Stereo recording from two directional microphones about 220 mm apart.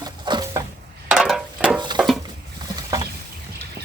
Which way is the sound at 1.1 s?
Centre (ahead or behind).